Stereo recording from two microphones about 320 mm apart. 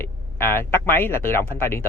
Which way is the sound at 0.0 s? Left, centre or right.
Centre.